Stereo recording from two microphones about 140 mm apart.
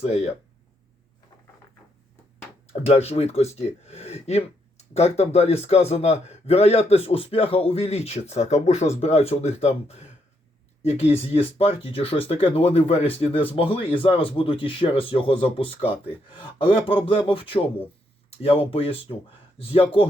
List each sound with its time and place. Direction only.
2.8 s speech: 45° left (ahead or behind)